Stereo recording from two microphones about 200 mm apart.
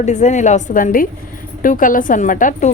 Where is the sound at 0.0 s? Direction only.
35° left (ahead or behind).